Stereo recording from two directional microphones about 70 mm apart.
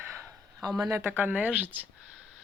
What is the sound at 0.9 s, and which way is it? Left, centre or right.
Speech, right.